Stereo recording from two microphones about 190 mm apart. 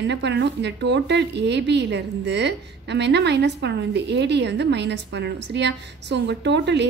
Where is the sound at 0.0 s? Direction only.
65° right (ahead or behind).